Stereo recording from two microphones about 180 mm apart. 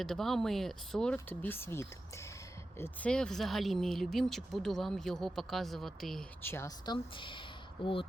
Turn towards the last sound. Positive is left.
turn(degrees=30)  # may be behind; listen again after turning